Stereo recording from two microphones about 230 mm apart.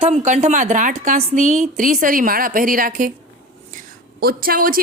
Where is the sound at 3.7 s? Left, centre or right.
Right.